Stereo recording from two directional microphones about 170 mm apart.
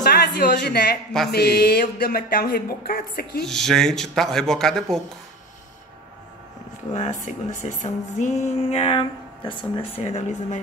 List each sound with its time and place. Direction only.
0.0 s a sound: 65° left (ahead or behind)
3.4 s speech: 5° left (ahead or behind)
6.9 s speech: 45° left (ahead or behind)